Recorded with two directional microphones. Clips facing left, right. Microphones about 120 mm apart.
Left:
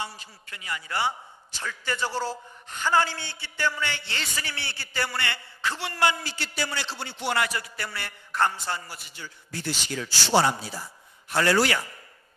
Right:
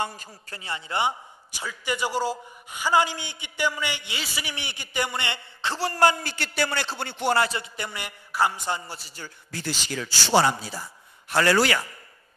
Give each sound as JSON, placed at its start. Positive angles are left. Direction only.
{"t": 0.0, "sound": "a man's voice", "side_deg": -45}
{"t": 0.6, "sound": "a man's voice", "side_deg": -25}
{"t": 6.3, "sound": "speech", "side_deg": -60}
{"t": 7.3, "sound": "a man's voice", "side_deg": -25}
{"t": 8.9, "sound": "a man's voice", "side_deg": -30}
{"t": 9.5, "sound": "a man's voice", "side_deg": -90}